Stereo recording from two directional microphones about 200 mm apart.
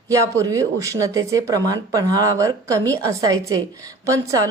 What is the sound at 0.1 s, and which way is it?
A woman's voice, 15° right (ahead or behind).